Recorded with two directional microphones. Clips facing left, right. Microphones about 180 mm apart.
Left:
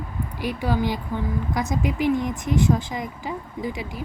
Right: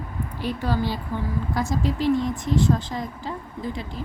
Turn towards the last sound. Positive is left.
turn(degrees=10)  # may be behind; listen again after turning